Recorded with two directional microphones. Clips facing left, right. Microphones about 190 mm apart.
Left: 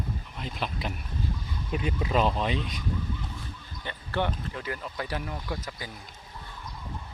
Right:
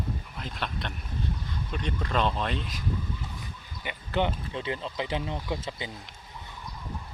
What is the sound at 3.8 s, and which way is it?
Speech, 15° right (ahead or behind).